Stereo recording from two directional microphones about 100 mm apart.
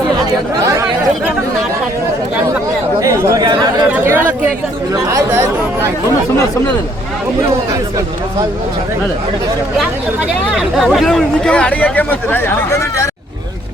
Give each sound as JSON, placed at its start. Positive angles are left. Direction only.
{"t": 0.6, "sound": "chatter", "side_deg": -30}
{"t": 3.0, "sound": "chatter", "side_deg": -30}
{"t": 3.5, "sound": "chatter", "side_deg": -45}
{"t": 3.9, "sound": "chatter", "side_deg": -20}
{"t": 5.0, "sound": "speech", "side_deg": -25}
{"t": 10.5, "sound": "speech", "side_deg": -5}